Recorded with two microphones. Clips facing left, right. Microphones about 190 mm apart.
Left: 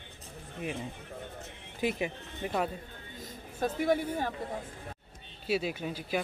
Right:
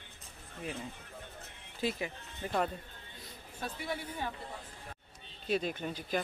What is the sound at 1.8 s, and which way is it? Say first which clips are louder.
Speech: left 4 dB; 15° left (ahead or behind).